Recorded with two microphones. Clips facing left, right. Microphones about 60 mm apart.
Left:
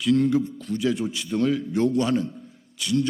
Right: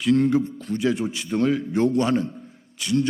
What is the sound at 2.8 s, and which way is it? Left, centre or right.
Speech, right.